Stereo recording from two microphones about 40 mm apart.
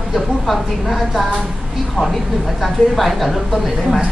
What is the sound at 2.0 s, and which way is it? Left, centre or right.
Speech, right.